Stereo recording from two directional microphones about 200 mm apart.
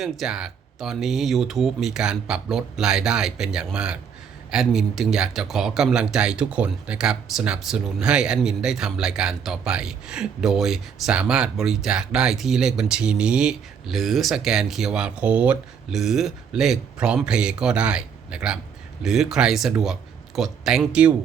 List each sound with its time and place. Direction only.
0.0 s speech: centre (ahead or behind)